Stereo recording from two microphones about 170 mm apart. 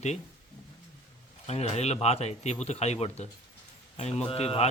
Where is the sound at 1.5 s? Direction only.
40° left (ahead or behind).